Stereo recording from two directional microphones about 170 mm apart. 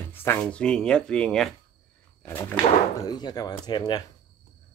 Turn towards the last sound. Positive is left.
turn(degrees=25)  # may be behind; listen again after turning